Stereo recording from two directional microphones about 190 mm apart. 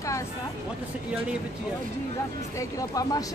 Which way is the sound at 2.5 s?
20° left (ahead or behind).